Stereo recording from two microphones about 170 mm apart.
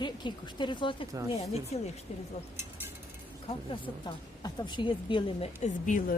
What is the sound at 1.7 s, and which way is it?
Speech, 40° left (ahead or behind).